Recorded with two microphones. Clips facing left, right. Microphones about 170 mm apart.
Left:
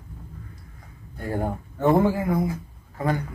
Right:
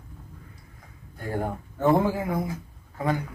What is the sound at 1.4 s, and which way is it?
Speech, centre (ahead or behind).